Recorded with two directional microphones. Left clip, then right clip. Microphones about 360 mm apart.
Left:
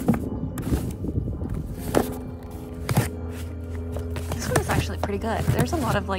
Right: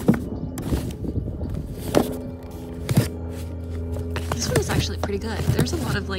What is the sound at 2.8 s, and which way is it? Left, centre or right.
Music, centre.